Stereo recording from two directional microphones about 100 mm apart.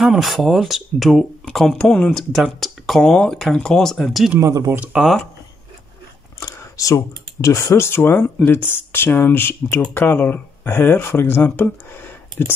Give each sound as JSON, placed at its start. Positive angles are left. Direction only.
{"t": 0.0, "sound": "speech", "side_deg": 0}
{"t": 4.4, "sound": "speech", "side_deg": -30}
{"t": 4.7, "sound": "speech", "side_deg": -5}
{"t": 6.4, "sound": "a sound", "side_deg": 35}
{"t": 7.4, "sound": "speech", "side_deg": 30}